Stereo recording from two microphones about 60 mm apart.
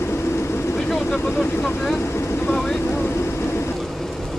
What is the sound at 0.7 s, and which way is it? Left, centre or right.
Vehicle, centre.